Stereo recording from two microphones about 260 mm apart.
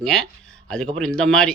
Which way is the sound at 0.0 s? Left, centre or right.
Centre.